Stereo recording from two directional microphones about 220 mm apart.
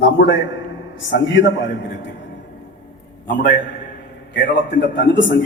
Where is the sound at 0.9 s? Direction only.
55° left (ahead or behind).